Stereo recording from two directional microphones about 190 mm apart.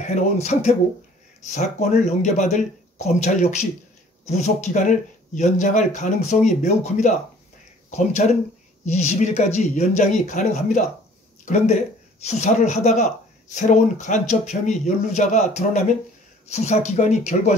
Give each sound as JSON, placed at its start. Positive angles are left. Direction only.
{"t": 0.0, "sound": "speech", "side_deg": 35}